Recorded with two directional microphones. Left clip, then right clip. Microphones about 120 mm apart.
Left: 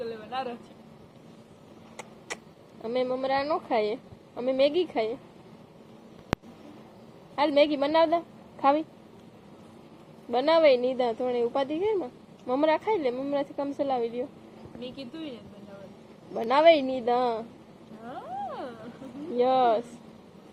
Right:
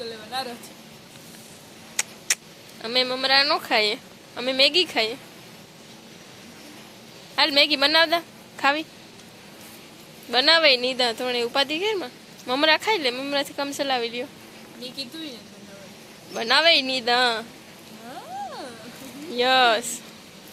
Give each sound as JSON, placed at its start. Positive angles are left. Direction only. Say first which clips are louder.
{"t": 0.0, "sound": "a sound", "louder": "right 2 dB", "side_deg": -15}
{"t": 2.0, "sound": "vehicle", "louder": "right 13 dB", "side_deg": 10}
{"t": 2.8, "sound": "a woman's voice", "louder": "right 5 dB", "side_deg": 5}
{"t": 7.3, "sound": "a woman's voice", "louder": "right 4 dB", "side_deg": 5}
{"t": 10.3, "sound": "a woman's voice", "louder": "right 3 dB", "side_deg": 5}
{"t": 16.4, "sound": "a woman's voice", "louder": "right 1 dB", "side_deg": 5}
{"t": 18.1, "sound": "a sound", "louder": "right 1 dB", "side_deg": -15}
{"t": 19.4, "sound": "a woman's voice", "louder": "right 4 dB", "side_deg": 5}